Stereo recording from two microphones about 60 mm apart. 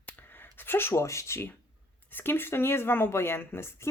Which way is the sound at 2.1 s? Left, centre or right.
Left.